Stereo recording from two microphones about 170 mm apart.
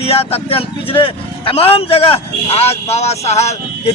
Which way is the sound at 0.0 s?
35° left (ahead or behind).